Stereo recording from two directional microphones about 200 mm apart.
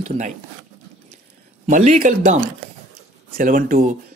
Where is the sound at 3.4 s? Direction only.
45° right (ahead or behind).